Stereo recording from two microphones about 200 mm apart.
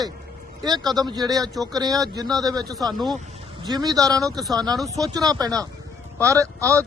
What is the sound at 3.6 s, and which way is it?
Speech, 20° right (ahead or behind).